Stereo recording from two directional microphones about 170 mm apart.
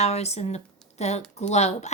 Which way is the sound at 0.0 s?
40° left (ahead or behind).